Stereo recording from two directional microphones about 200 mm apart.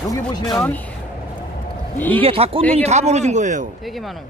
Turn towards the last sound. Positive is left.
turn(degrees=0)  # may be behind; listen again after turning